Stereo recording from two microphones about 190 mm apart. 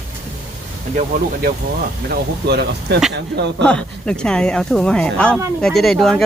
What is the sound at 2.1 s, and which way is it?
Speech, 60° right (ahead or behind).